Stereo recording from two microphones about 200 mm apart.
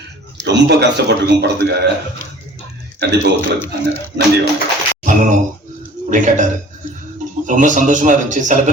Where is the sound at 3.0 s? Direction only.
60° right (ahead or behind).